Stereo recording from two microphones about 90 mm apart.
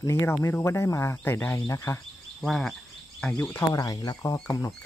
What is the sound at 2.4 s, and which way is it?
Speech, 5° left (ahead or behind).